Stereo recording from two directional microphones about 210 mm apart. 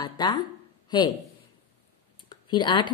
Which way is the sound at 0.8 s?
20° left (ahead or behind).